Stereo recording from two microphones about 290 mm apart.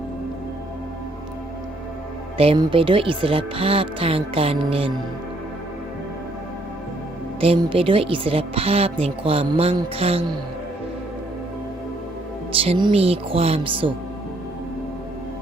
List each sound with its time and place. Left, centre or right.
2.4 s speech: centre
7.4 s speech: centre
12.5 s speech: centre